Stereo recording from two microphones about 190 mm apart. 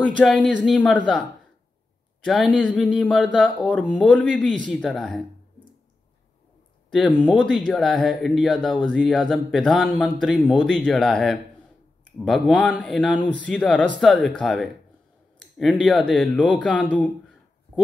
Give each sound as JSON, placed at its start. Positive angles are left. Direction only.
{"t": 0.2, "sound": "speech", "side_deg": 5}
{"t": 2.2, "sound": "speech", "side_deg": 0}
{"t": 6.9, "sound": "speech", "side_deg": 5}